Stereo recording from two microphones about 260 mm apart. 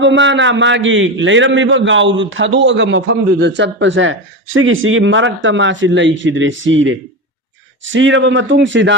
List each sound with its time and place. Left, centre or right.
0.0 s a man's voice: right